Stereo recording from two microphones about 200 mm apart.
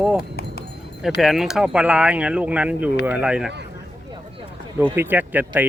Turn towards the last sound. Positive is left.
turn(degrees=-10)  # may be behind; listen again after turning